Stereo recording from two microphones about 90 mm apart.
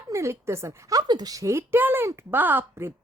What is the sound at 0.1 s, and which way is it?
A woman's voice, 30° right (ahead or behind).